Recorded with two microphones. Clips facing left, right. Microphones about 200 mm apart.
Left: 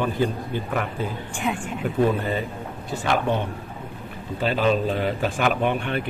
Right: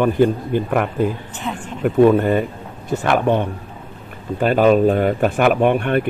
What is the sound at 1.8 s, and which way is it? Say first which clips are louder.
Speech: right 9 dB; 55° right (ahead or behind).